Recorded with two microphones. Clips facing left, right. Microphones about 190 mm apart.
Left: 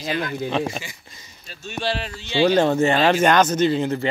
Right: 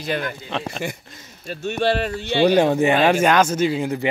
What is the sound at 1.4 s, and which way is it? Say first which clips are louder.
Speech: right 6 dB; 55° right (ahead or behind).